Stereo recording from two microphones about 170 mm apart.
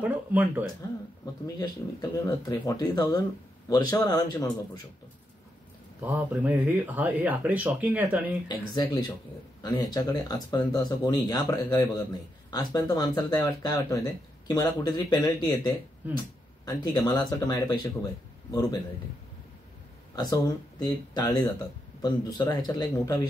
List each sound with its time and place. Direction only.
0.0 s speech: 10° right (ahead or behind)
1.4 s speech: 20° left (ahead or behind)
6.0 s speech: 10° right (ahead or behind)
8.5 s speech: 25° left (ahead or behind)
20.2 s speech: 25° left (ahead or behind)